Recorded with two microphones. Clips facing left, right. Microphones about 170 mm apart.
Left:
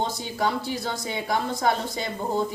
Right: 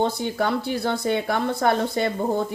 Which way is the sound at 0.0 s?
60° right (ahead or behind).